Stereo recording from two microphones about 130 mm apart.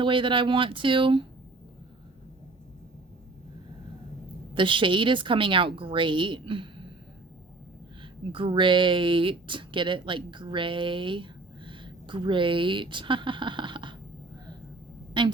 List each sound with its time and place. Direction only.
0.0 s speech: 40° right (ahead or behind)
4.5 s speech: 40° right (ahead or behind)
8.2 s speech: 40° right (ahead or behind)
15.2 s speech: 40° right (ahead or behind)